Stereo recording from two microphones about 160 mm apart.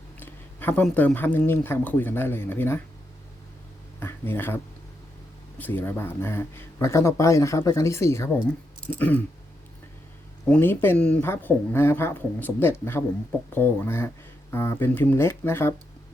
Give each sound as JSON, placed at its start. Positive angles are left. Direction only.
{"t": 0.2, "sound": "speech", "side_deg": 10}
{"t": 4.0, "sound": "speech", "side_deg": 15}
{"t": 10.5, "sound": "speech", "side_deg": 15}